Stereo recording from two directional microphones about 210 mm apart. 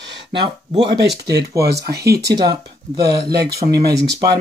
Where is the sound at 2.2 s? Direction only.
20° right (ahead or behind).